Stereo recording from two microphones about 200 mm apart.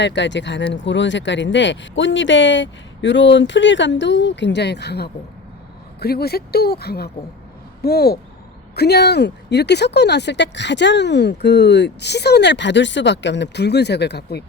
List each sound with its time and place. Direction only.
0.0 s speech: 60° left (ahead or behind)